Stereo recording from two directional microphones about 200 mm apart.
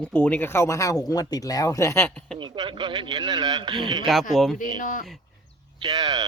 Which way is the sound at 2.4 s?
25° right (ahead or behind).